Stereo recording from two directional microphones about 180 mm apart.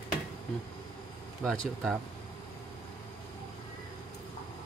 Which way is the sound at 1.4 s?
5° left (ahead or behind).